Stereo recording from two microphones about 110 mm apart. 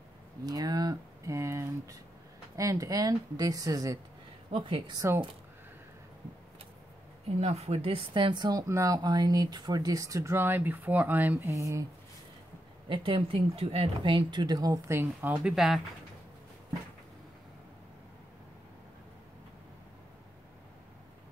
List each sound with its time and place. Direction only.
0.5 s a sound: 35° right (ahead or behind)
2.5 s speech: 30° right (ahead or behind)
4.5 s speech: 55° right (ahead or behind)
4.9 s speech: 25° right (ahead or behind)
7.3 s speech: 70° right (ahead or behind); by 8.5 s 45° right (ahead or behind)
8.5 s speech: 30° right (ahead or behind)
12.8 s speech: 50° right (ahead or behind); by 15.3 s 20° right (ahead or behind)
15.3 s speech: 5° right (ahead or behind)